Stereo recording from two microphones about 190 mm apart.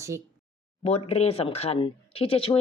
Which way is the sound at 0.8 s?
30° left (ahead or behind).